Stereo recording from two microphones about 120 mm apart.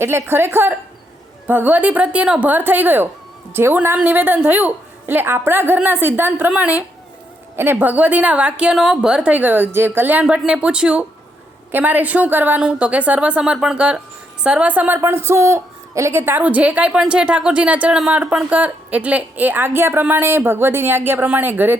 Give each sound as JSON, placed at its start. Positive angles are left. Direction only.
{"t": 0.0, "sound": "a woman's voice", "side_deg": -20}